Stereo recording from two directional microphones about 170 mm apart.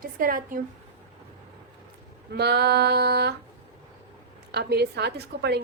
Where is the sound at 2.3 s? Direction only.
70° right (ahead or behind).